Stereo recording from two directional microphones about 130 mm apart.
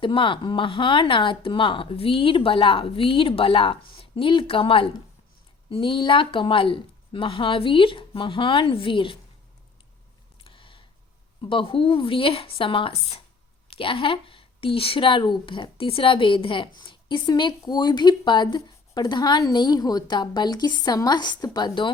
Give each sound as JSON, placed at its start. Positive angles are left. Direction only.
{"t": 0.0, "sound": "speech", "side_deg": 40}
{"t": 10.4, "sound": "a sound", "side_deg": 40}
{"t": 11.4, "sound": "speech", "side_deg": 40}